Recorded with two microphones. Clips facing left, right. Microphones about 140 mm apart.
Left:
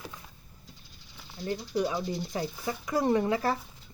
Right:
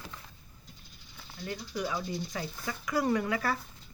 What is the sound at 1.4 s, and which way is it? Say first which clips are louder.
Speech: left 6 dB; 25° left (ahead or behind).